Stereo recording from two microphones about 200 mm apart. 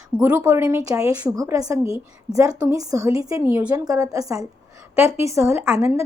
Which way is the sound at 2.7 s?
15° right (ahead or behind).